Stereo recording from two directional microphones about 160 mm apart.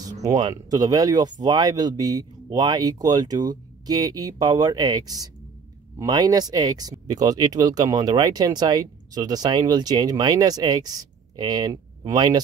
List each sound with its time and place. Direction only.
0.0 s speech: 20° right (ahead or behind)